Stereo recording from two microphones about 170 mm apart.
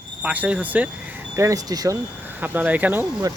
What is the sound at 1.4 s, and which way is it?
Speech, 20° right (ahead or behind).